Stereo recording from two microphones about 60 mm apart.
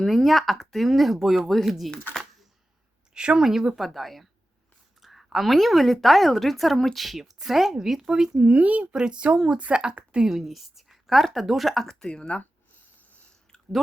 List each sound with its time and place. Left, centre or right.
0.0 s a woman's voice: centre
3.2 s a woman's voice: centre
8.4 s speech: right
10.2 s a woman's voice: centre